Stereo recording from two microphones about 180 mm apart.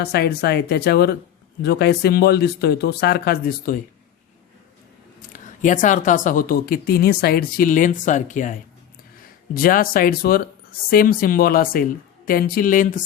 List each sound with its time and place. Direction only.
0.0 s speech: 60° left (ahead or behind)
5.3 s speech: 45° left (ahead or behind)
9.6 s speech: 50° left (ahead or behind)